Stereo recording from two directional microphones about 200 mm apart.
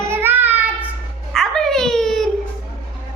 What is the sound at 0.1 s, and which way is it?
Child singing, 10° right (ahead or behind).